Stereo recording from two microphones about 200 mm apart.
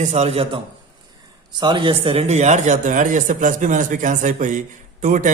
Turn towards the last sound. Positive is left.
turn(degrees=-40)  # may be behind; listen again after turning